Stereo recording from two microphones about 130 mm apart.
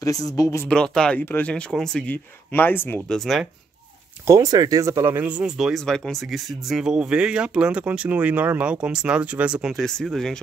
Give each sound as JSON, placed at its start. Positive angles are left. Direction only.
{"t": 0.0, "sound": "speech", "side_deg": 25}
{"t": 0.7, "sound": "speech", "side_deg": 5}
{"t": 2.5, "sound": "speech", "side_deg": 15}
{"t": 3.1, "sound": "speech", "side_deg": 0}
{"t": 4.3, "sound": "speech", "side_deg": -25}